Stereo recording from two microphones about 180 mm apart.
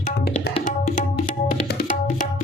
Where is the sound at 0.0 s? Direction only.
45° left (ahead or behind).